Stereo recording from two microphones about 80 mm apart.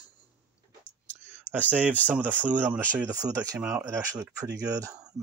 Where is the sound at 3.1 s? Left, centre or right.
Right.